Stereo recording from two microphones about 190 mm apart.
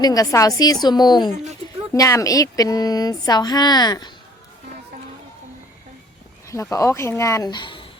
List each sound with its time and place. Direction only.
0.0 s speech: 20° left (ahead or behind)
6.5 s speech: 15° left (ahead or behind)